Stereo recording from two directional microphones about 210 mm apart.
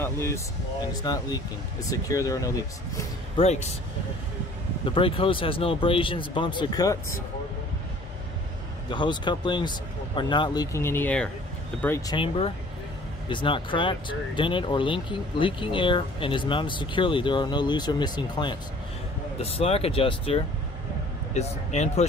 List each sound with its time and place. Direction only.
0.0 s speech: 10° left (ahead or behind)
3.3 s speech: 30° left (ahead or behind)
4.8 s speech: 25° left (ahead or behind)
8.9 s speech: 20° left (ahead or behind)
12.2 s speech: 25° left (ahead or behind)